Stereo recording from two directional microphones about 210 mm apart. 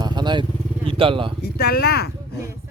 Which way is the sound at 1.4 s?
50° left (ahead or behind).